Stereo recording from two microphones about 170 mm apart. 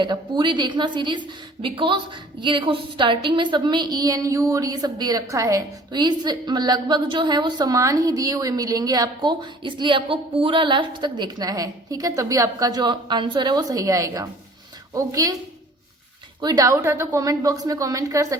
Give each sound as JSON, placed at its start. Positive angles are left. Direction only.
{"t": 0.0, "sound": "a woman's voice", "side_deg": -25}
{"t": 16.4, "sound": "a woman's voice", "side_deg": -20}